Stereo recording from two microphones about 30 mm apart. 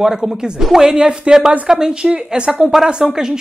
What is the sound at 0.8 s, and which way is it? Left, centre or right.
A woman's voice, right.